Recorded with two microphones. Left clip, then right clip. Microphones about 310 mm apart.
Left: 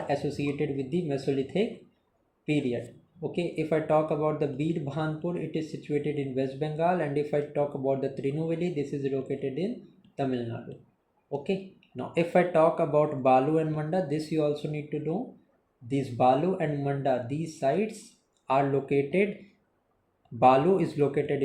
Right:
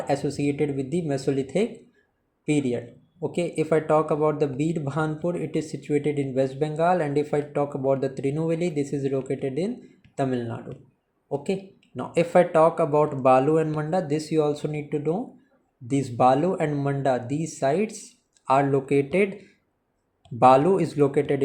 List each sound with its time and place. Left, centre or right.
0.1 s speech: right
3.2 s speech: right
11.9 s speech: right
20.4 s speech: right